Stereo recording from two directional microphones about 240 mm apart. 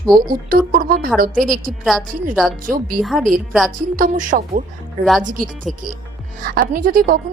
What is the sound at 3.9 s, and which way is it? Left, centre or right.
A woman's voice, right.